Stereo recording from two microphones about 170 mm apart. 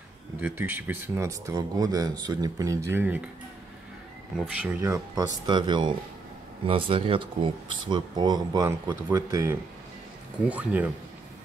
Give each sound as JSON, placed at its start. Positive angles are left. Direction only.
{"t": 0.4, "sound": "speech", "side_deg": -10}
{"t": 4.6, "sound": "speech", "side_deg": -10}